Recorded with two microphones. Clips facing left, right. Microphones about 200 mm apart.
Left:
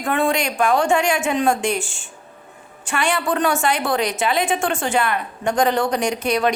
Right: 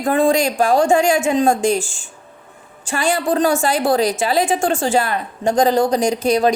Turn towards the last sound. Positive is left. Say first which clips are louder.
# right 4 dB
turn(degrees=-30)  # may be behind; listen again after turning